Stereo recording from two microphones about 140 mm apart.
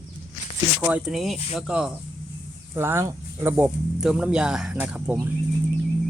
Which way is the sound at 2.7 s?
15° right (ahead or behind).